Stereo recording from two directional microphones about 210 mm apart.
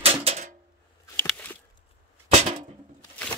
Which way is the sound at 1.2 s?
5° left (ahead or behind).